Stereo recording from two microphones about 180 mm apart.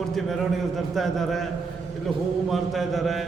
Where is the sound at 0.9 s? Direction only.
Centre (ahead or behind).